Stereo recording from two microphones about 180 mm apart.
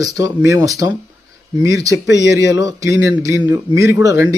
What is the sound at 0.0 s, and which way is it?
Speech, 20° right (ahead or behind).